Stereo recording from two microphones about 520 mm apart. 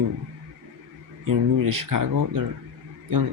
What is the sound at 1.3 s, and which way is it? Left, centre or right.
Speech, right.